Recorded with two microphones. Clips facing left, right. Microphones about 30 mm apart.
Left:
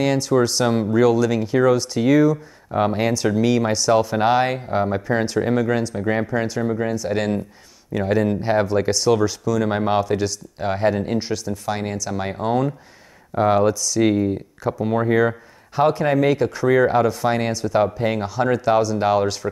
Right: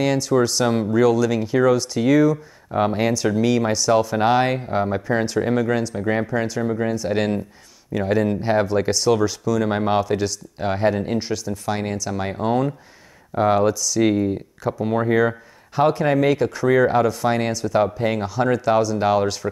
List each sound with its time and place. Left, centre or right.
0.0 s speech: centre